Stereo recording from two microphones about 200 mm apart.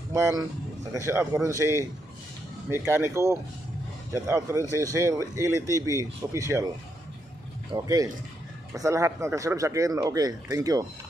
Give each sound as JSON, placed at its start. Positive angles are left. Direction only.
{"t": 0.9, "sound": "speech", "side_deg": -15}
{"t": 7.7, "sound": "speech", "side_deg": -15}